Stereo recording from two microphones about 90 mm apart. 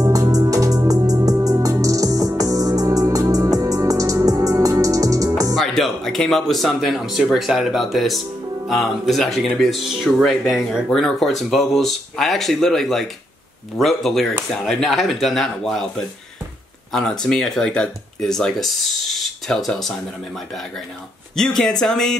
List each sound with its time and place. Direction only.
0.0 s music: 40° right (ahead or behind)
5.5 s speech: centre (ahead or behind)
17.2 s speech: 10° left (ahead or behind)